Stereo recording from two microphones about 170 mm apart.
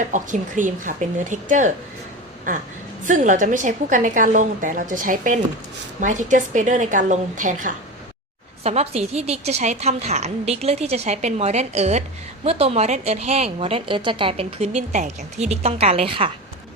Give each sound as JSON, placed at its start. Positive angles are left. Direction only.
{"t": 0.1, "sound": "a woman's voice", "side_deg": -50}
{"t": 3.1, "sound": "a woman's voice", "side_deg": -50}
{"t": 8.6, "sound": "a woman's voice", "side_deg": -40}